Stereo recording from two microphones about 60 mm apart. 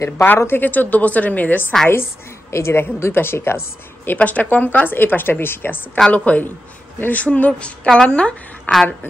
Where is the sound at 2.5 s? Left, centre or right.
Left.